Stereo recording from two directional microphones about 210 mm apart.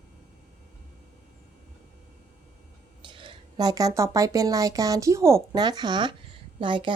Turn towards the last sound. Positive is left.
turn(degrees=-25)  # may be behind; listen again after turning